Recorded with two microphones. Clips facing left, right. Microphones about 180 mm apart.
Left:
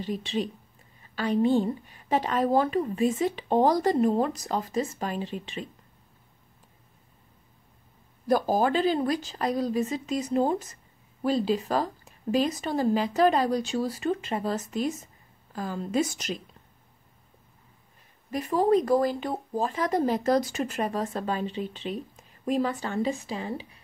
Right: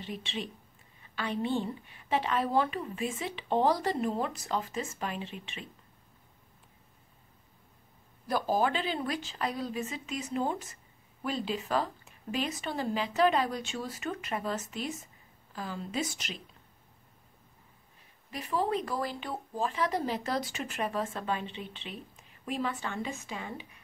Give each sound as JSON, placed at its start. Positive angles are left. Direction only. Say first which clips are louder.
{"t": 0.0, "sound": "speech", "louder": "left 8 dB", "side_deg": 40}
{"t": 8.3, "sound": "speech", "louder": "left 5 dB", "side_deg": 45}
{"t": 18.3, "sound": "speech", "louder": "left 8 dB", "side_deg": 45}